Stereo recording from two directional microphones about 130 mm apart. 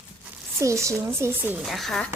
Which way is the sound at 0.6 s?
25° right (ahead or behind).